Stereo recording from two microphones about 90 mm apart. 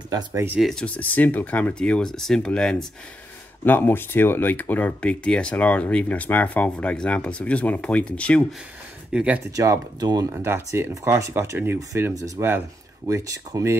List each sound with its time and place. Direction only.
0.7 s speech: 15° left (ahead or behind)
3.6 s speech: 20° left (ahead or behind)
9.1 s speech: 10° right (ahead or behind)
9.6 s speech: 45° right (ahead or behind)
10.3 s speech: 30° right (ahead or behind)
13.0 s speech: 40° right (ahead or behind)